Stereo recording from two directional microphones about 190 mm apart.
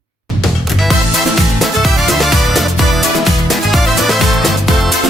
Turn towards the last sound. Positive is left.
turn(degrees=0)  # may be behind; listen again after turning